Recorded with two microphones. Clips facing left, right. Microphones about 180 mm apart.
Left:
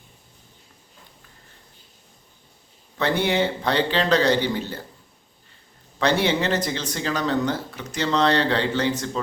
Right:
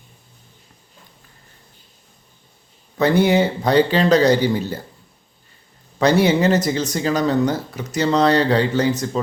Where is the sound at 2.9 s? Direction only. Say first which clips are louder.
Right 7 dB; 40° right (ahead or behind).